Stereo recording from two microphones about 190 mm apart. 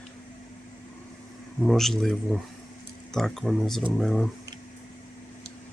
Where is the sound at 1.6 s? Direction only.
Centre (ahead or behind).